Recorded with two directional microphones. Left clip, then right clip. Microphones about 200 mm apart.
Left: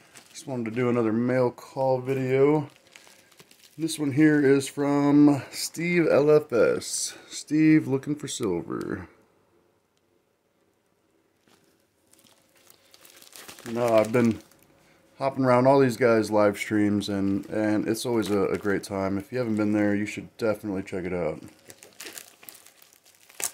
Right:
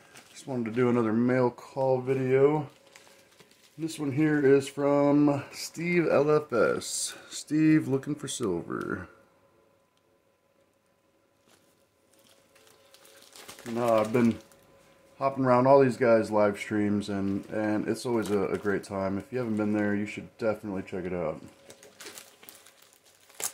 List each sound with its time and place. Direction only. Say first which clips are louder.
0.1 s speech: left 1 dB; 40° left (ahead or behind)
3.8 s speech: left 6 dB; 40° left (ahead or behind); by 9.1 s 20° left (ahead or behind)
13.7 s speech: left 3 dB; 45° left (ahead or behind)